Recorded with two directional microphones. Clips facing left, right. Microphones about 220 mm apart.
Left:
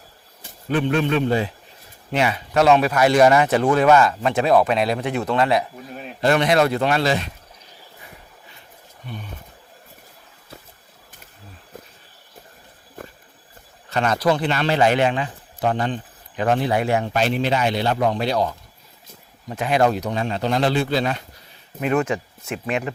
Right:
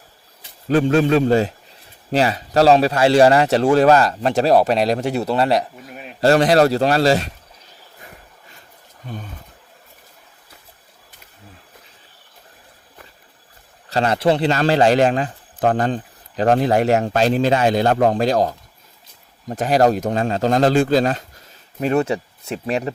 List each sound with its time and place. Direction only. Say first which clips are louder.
0.7 s a man's voice: right 5 dB; 40° right (ahead or behind)
13.0 s a sound: left 9 dB; 45° left (ahead or behind)
13.9 s a man's voice: right 3 dB; 30° right (ahead or behind)